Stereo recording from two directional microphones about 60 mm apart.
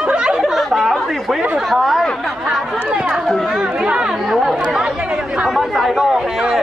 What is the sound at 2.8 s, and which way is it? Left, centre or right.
Speech, centre.